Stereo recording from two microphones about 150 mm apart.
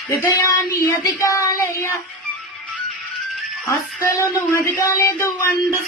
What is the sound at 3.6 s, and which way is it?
Child singing, 20° left (ahead or behind).